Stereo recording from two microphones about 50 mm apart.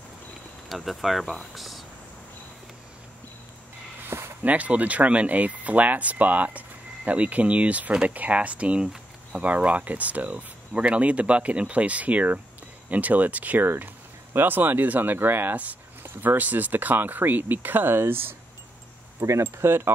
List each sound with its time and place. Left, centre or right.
0.7 s speech: centre
1.2 s speech: centre
1.5 s a sound: centre
4.4 s speech: right
16.3 s speech: right
17.9 s speech: right
19.1 s speech: right